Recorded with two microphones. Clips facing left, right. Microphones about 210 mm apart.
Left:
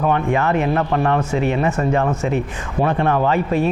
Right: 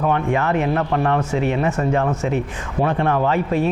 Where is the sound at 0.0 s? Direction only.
25° left (ahead or behind).